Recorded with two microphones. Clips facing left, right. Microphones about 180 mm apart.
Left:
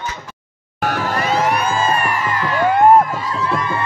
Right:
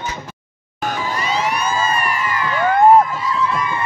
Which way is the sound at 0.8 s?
65° left (ahead or behind).